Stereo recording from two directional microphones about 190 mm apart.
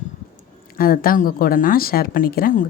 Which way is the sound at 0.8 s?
50° left (ahead or behind).